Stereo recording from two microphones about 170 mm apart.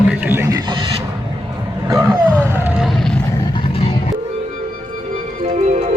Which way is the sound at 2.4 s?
10° right (ahead or behind).